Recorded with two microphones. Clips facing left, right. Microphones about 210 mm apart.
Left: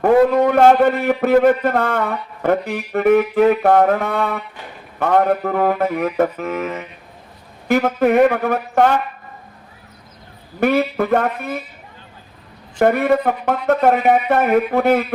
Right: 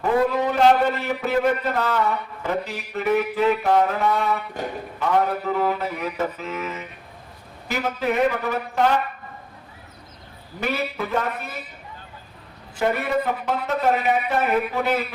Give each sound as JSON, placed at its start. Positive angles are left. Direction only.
{"t": 0.0, "sound": "a man's voice", "side_deg": 55}
{"t": 4.6, "sound": "speech", "side_deg": -40}
{"t": 4.9, "sound": "a man's voice", "side_deg": 55}
{"t": 10.6, "sound": "a man's voice", "side_deg": 55}
{"t": 12.8, "sound": "a man's voice", "side_deg": 55}